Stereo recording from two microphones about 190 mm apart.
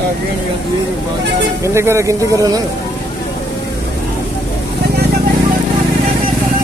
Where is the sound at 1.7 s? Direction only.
15° right (ahead or behind).